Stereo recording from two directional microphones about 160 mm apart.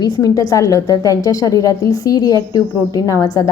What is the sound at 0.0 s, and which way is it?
A woman's voice, 25° left (ahead or behind).